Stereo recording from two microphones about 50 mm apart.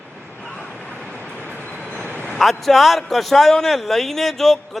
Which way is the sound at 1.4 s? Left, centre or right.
Left.